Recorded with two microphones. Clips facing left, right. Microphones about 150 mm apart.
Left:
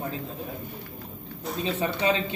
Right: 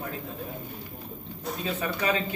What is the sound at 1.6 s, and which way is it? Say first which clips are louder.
Speech: left 3 dB; 25° left (ahead or behind).